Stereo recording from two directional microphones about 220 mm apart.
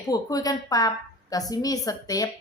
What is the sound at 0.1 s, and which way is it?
A woman's voice, 15° left (ahead or behind).